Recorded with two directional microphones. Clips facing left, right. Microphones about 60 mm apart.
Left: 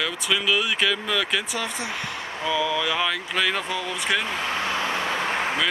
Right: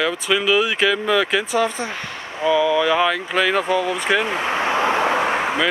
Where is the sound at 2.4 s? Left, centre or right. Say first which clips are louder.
Right 8 dB; centre.